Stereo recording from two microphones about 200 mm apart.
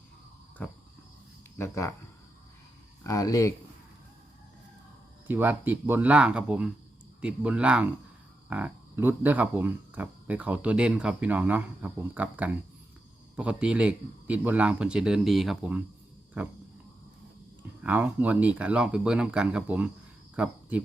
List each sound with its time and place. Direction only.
0.6 s speech: 10° left (ahead or behind)
3.0 s speech: 15° left (ahead or behind)
5.3 s speech: 10° right (ahead or behind)
17.6 s speech: 10° right (ahead or behind)